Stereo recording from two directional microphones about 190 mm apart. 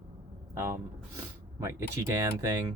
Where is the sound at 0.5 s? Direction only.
15° right (ahead or behind).